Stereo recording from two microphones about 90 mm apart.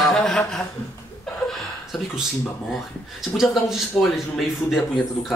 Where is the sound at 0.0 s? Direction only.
5° left (ahead or behind).